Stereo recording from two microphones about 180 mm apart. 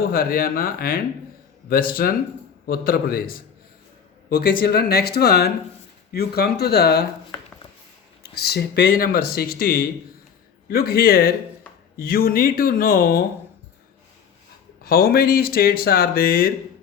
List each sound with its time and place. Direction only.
0.1 s speech: 55° left (ahead or behind)
4.6 s speech: 60° left (ahead or behind)
8.2 s speech: 65° left (ahead or behind)
14.8 s speech: 55° left (ahead or behind)